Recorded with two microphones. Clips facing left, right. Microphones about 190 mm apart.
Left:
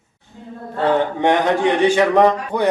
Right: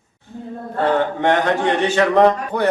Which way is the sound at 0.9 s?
15° left (ahead or behind).